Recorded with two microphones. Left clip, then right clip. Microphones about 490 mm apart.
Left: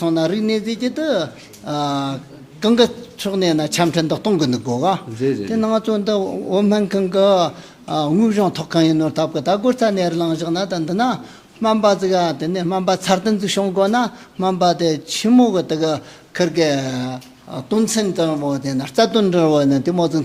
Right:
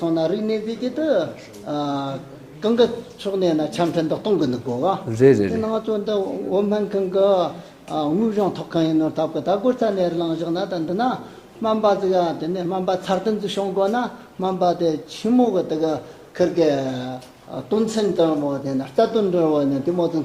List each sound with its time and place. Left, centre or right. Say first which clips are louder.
0.0 s a man's voice: left 3 dB; left
5.2 s speech: right 8 dB; centre
5.6 s a man's voice: left 4 dB; left